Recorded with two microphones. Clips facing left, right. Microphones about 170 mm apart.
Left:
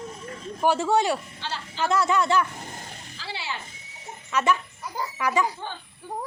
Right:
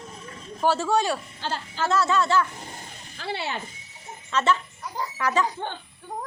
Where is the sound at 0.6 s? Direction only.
15° left (ahead or behind).